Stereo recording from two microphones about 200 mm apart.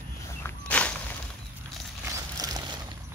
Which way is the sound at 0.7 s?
5° left (ahead or behind).